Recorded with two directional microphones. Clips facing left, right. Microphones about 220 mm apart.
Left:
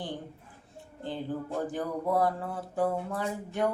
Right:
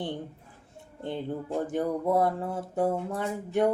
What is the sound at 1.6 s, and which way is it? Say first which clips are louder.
Speech: right 7 dB; 25° right (ahead or behind).